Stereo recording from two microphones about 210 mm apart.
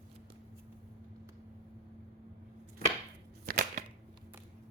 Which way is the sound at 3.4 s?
40° right (ahead or behind).